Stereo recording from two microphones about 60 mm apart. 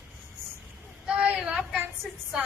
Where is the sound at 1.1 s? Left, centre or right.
Centre.